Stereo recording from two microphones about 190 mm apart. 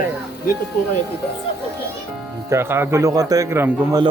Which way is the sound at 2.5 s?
15° right (ahead or behind).